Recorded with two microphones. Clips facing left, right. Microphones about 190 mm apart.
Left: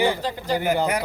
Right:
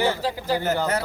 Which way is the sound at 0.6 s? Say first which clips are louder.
Left 3 dB; 15° left (ahead or behind).